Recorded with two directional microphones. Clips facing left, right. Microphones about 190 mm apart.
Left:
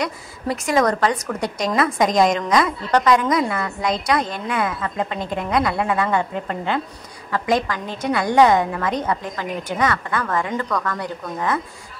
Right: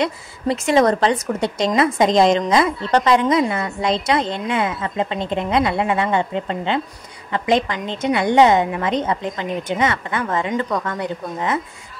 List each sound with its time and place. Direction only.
0.0 s speech: 25° right (ahead or behind)